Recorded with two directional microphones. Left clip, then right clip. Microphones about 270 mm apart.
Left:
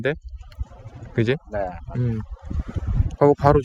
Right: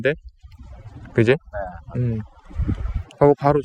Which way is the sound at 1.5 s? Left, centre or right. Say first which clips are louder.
Left 3 dB; left.